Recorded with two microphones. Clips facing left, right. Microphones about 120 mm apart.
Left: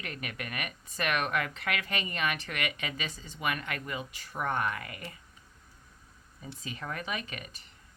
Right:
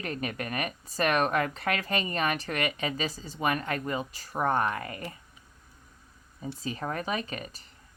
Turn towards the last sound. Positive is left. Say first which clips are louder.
# right 5 dB
turn(degrees=-35)  # may be behind; listen again after turning